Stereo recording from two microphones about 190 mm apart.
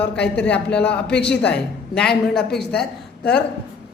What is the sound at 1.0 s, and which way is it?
Speech, 60° left (ahead or behind).